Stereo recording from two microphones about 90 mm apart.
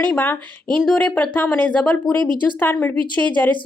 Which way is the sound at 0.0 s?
20° left (ahead or behind).